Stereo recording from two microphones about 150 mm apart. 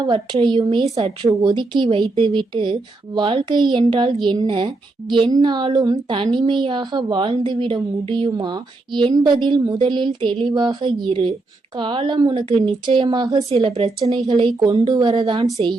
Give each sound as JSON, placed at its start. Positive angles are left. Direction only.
{"t": 0.0, "sound": "a woman's voice", "side_deg": -35}
{"t": 13.5, "sound": "a woman's voice", "side_deg": -40}
{"t": 14.3, "sound": "a woman's voice", "side_deg": -30}